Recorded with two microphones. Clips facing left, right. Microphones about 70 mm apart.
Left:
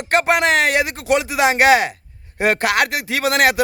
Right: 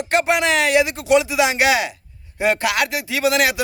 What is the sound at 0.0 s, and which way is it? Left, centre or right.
A man's voice, left.